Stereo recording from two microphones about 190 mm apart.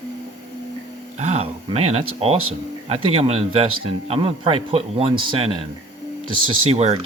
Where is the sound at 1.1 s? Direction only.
35° right (ahead or behind).